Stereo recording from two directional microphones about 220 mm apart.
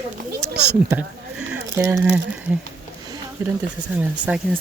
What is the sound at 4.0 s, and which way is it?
Speech, 5° right (ahead or behind).